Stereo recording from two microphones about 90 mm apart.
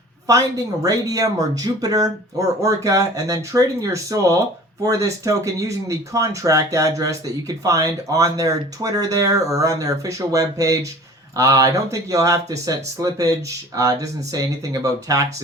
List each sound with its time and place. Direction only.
0.3 s speech: 40° right (ahead or behind)